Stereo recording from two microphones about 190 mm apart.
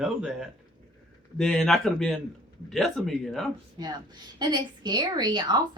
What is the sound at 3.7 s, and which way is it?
A woman's voice, 20° right (ahead or behind).